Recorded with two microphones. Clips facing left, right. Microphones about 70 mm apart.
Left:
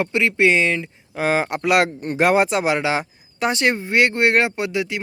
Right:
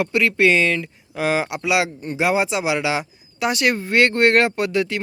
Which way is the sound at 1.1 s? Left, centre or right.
Left.